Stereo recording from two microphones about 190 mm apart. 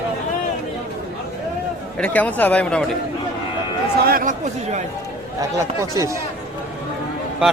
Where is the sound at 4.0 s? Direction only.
50° right (ahead or behind).